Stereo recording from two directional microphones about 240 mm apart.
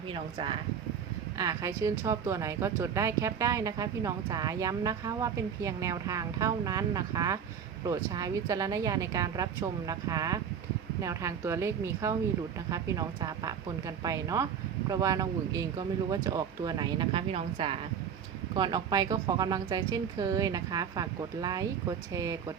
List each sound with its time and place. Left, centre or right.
0.1 s speech: right